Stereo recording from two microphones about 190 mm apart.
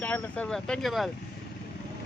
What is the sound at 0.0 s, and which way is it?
Speech, 10° left (ahead or behind).